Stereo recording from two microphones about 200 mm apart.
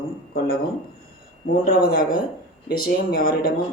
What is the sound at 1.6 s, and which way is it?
Speech, 45° left (ahead or behind).